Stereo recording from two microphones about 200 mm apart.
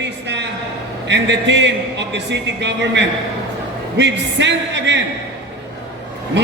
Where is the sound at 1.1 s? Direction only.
60° right (ahead or behind).